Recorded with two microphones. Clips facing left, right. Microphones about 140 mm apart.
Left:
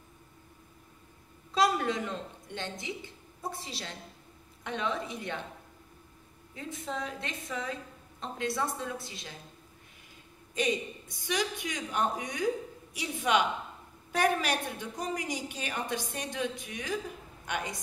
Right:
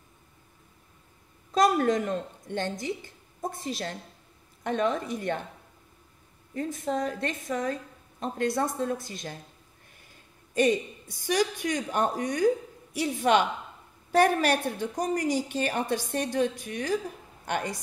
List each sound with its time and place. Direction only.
1.5 s a woman's voice: 45° right (ahead or behind)
6.5 s a woman's voice: 50° right (ahead or behind)
10.5 s a woman's voice: 50° right (ahead or behind)